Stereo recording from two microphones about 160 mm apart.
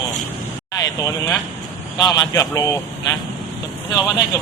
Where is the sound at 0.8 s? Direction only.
20° left (ahead or behind).